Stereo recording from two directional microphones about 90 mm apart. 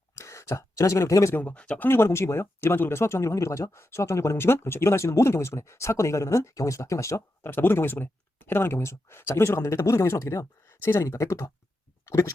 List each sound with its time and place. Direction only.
0.2 s speech: 35° left (ahead or behind)
1.4 s speech: 15° left (ahead or behind); by 11.5 s 35° left (ahead or behind)
12.0 s a sound: 35° left (ahead or behind)